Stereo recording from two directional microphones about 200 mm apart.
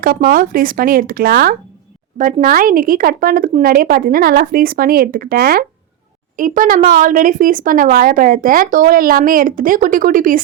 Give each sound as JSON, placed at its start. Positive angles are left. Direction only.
{"t": 0.0, "sound": "speech", "side_deg": -45}